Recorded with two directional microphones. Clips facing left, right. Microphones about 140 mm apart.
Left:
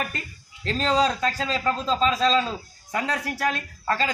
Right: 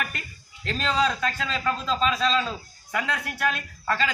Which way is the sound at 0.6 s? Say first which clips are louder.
Left 3 dB; 35° left (ahead or behind).